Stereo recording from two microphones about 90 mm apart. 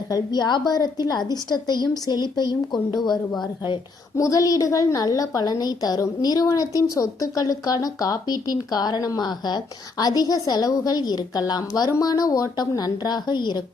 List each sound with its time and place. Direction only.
0.1 s a woman's voice: 50° left (ahead or behind)
3.1 s a woman's voice: 5° left (ahead or behind)
4.2 s a woman's voice: 40° left (ahead or behind); by 13.6 s 55° left (ahead or behind)